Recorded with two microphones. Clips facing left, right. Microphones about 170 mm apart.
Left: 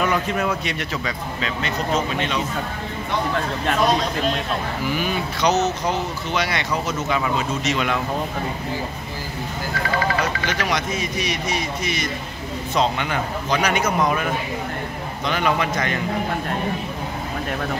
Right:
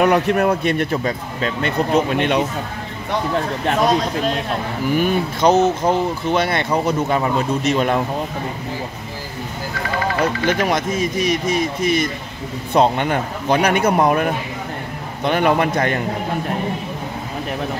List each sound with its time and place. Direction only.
0.0 s speech: 60° right (ahead or behind)
4.9 s speech: 50° right (ahead or behind)
6.7 s speech: 35° right (ahead or behind)
7.1 s speech: 45° right (ahead or behind)
10.2 s speech: 50° right (ahead or behind)